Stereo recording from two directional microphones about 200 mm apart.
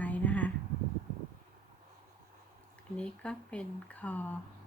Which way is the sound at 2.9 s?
5° left (ahead or behind).